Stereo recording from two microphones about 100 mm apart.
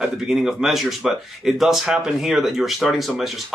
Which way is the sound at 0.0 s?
5° right (ahead or behind).